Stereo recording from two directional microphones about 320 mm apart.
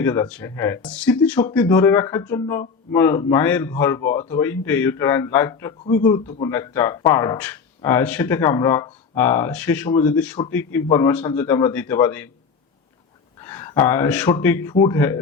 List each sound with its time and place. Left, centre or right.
0.0 s speech: centre
13.4 s speech: centre